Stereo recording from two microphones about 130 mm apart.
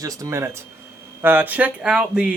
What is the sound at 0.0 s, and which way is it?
Speech, 25° right (ahead or behind).